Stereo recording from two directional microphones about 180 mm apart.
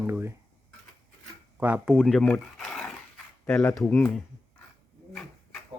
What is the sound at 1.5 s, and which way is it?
Speech, 10° right (ahead or behind).